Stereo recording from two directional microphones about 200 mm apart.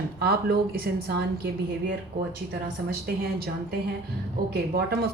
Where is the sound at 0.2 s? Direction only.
50° right (ahead or behind).